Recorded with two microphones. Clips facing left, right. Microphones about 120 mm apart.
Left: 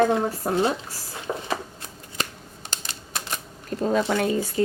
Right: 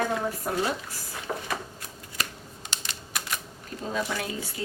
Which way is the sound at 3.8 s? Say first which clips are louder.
Left 8 dB; 50° left (ahead or behind).